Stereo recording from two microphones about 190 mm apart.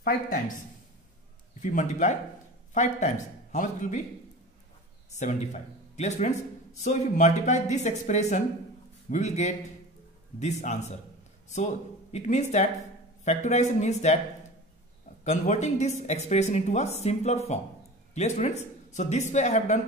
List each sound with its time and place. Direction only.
0.0 s speech: 45° left (ahead or behind)
1.6 s speech: 40° left (ahead or behind)
5.2 s speech: 40° left (ahead or behind)
15.2 s speech: 35° left (ahead or behind)